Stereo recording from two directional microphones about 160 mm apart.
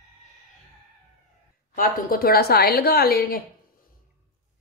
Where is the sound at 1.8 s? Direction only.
65° left (ahead or behind).